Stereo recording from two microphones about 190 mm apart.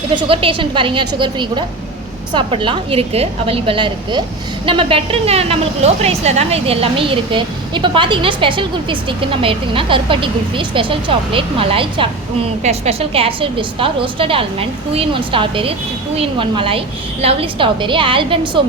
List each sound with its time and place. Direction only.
0.1 s a woman's voice: 25° right (ahead or behind)